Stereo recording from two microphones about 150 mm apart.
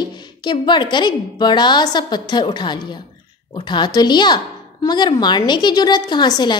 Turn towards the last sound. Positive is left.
turn(degrees=30)  # may be behind; listen again after turning